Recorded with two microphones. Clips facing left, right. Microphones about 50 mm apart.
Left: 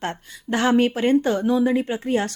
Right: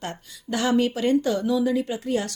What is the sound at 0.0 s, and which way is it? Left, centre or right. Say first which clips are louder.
Speech: left 5 dB; left.